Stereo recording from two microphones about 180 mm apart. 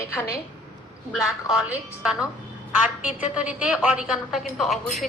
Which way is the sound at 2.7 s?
5° right (ahead or behind).